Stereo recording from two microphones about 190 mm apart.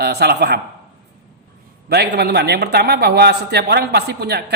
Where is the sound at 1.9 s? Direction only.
60° right (ahead or behind).